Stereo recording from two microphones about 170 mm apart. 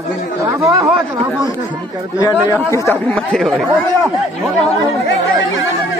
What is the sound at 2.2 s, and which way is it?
A man's voice, 20° left (ahead or behind).